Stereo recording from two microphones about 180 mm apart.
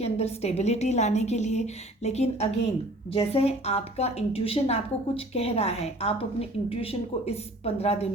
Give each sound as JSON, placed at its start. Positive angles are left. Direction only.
{"t": 0.0, "sound": "a woman's voice", "side_deg": 35}